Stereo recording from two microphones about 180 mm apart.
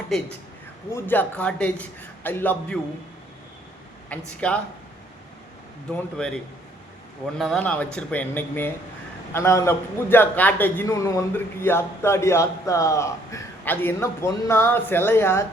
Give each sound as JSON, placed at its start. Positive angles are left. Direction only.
{"t": 0.9, "sound": "a man's voice", "side_deg": 15}
{"t": 4.3, "sound": "a man's voice", "side_deg": 5}
{"t": 5.9, "sound": "a man's voice", "side_deg": 5}